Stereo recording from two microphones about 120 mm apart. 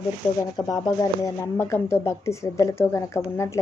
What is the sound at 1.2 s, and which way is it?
A woman's voice, 20° left (ahead or behind).